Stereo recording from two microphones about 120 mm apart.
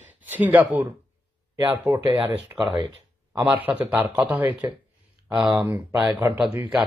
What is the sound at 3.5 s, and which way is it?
Speech, 15° right (ahead or behind).